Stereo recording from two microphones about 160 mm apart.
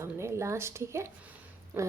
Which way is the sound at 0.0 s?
15° right (ahead or behind).